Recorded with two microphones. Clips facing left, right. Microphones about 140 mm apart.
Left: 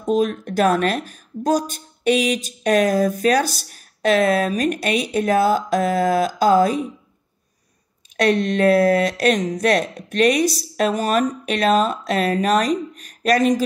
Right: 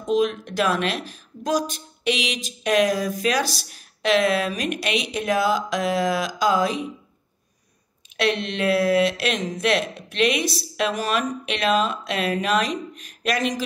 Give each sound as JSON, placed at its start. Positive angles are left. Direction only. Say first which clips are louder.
{"t": 0.1, "sound": "speech", "louder": "left 2 dB", "side_deg": 45}
{"t": 8.2, "sound": "speech", "louder": "left 6 dB", "side_deg": 45}